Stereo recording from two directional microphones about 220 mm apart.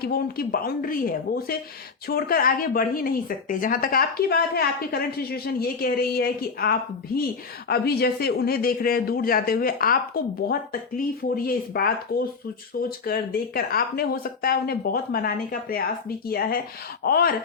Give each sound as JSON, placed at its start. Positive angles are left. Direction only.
{"t": 0.0, "sound": "a woman's voice", "side_deg": 45}